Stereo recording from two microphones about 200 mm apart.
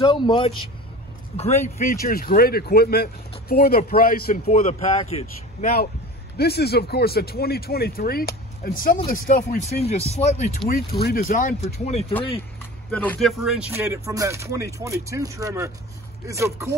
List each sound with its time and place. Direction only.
0.0 s speech: 25° left (ahead or behind); by 4.4 s 45° left (ahead or behind)
4.5 s speech: 35° left (ahead or behind)
6.3 s speech: 55° left (ahead or behind); by 10.4 s 30° left (ahead or behind)
10.7 s speech: 50° left (ahead or behind); by 12.1 s 30° left (ahead or behind)
12.9 s speech: 5° left (ahead or behind)
13.4 s speech: 5° right (ahead or behind)